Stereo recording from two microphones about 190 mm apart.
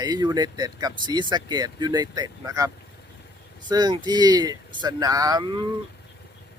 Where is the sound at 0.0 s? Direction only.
20° right (ahead or behind).